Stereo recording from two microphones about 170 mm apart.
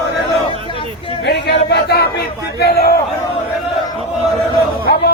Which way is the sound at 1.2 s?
80° left.